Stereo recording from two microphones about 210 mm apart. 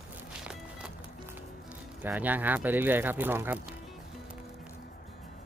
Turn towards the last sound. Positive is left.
turn(degrees=-10)  # may be behind; listen again after turning